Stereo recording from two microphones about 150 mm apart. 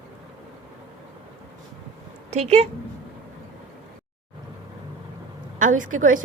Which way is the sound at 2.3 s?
50° right (ahead or behind).